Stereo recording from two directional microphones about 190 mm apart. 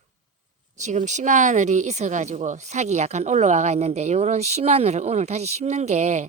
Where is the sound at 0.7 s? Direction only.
40° right (ahead or behind).